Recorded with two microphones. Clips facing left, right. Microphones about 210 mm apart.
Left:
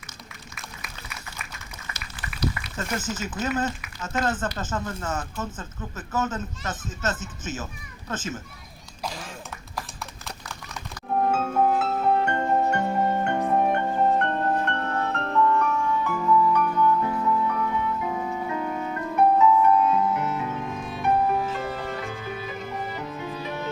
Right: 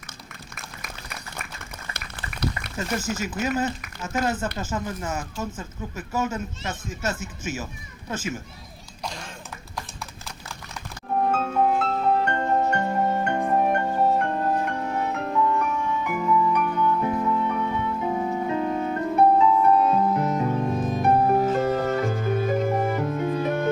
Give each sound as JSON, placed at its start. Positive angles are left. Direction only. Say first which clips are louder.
{"t": 0.5, "sound": "a sound", "louder": "right 2 dB", "side_deg": -50}
{"t": 2.7, "sound": "speech", "louder": "right 2 dB", "side_deg": -10}
{"t": 11.1, "sound": "music", "louder": "even", "side_deg": 5}